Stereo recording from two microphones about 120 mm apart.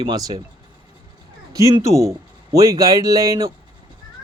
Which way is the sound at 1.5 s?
25° right (ahead or behind).